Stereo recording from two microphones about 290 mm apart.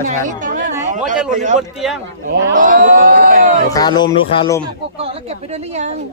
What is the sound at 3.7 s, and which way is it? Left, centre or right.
Speech, centre.